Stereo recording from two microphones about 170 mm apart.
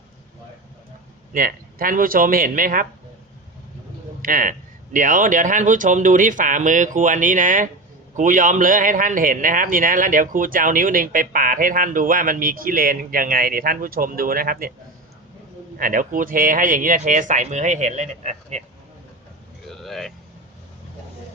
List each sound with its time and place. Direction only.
1.3 s a man's voice: 55° right (ahead or behind)
4.2 s a man's voice: 55° right (ahead or behind)
15.8 s a man's voice: 55° right (ahead or behind)
19.6 s a sound: centre (ahead or behind)